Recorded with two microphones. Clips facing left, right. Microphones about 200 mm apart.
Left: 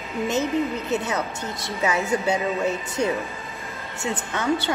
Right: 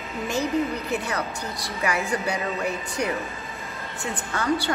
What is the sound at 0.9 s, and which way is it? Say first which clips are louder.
A woman's voice: left 2 dB; 20° left (ahead or behind).